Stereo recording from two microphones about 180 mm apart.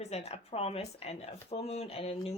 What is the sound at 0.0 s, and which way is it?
Speech, 35° left (ahead or behind).